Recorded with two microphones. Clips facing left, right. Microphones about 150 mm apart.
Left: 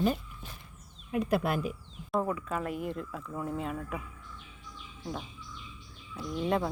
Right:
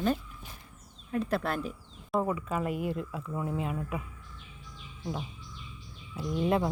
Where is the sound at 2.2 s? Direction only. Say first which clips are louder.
Right 2 dB; 5° right (ahead or behind).